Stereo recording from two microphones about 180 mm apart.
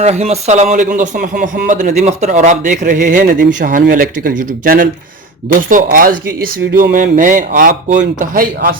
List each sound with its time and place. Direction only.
0.0 s a man's voice: 35° right (ahead or behind)